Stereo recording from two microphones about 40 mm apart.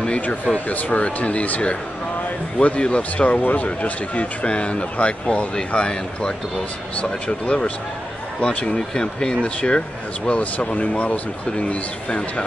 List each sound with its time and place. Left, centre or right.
0.7 s speech: left